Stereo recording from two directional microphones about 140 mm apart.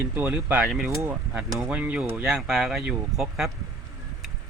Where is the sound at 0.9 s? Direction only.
20° right (ahead or behind).